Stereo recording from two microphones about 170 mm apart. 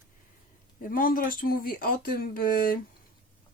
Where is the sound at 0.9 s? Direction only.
55° left (ahead or behind).